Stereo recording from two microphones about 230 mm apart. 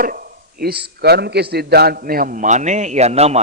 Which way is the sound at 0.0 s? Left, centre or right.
Right.